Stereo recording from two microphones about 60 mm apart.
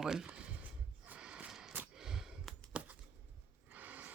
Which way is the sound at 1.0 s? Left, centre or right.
Right.